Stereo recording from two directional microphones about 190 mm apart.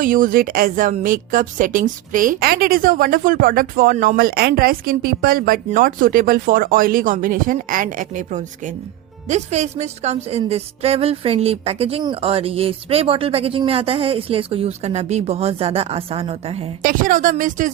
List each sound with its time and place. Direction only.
0.0 s a woman's voice: 45° right (ahead or behind)
16.8 s a woman's voice: 45° right (ahead or behind)